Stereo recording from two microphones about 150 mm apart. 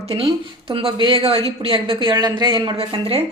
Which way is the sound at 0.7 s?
35° right (ahead or behind).